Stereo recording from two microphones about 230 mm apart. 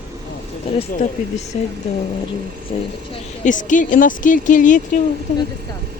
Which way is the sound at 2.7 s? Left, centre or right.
Left.